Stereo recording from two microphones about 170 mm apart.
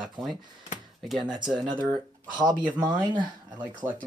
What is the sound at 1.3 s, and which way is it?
Speech, 25° right (ahead or behind).